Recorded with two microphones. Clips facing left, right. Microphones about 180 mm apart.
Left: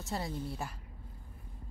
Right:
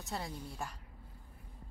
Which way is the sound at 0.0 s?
Centre (ahead or behind).